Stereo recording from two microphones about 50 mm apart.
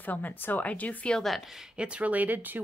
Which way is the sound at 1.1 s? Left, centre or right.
Centre.